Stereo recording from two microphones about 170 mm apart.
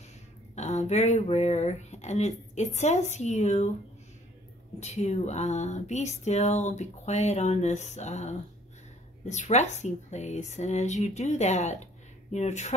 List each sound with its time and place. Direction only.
0.6 s speech: 45° left (ahead or behind)
4.7 s speech: 40° left (ahead or behind)